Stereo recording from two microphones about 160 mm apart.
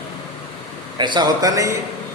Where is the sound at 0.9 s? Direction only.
30° right (ahead or behind).